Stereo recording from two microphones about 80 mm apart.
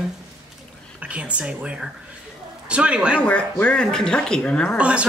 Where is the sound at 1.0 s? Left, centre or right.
Centre.